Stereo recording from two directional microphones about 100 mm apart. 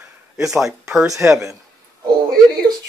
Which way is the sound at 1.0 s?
35° right (ahead or behind).